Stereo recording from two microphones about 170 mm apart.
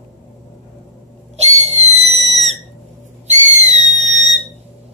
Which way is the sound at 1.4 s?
40° right (ahead or behind).